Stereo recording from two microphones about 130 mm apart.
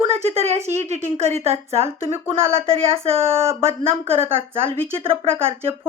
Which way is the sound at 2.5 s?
45° right (ahead or behind).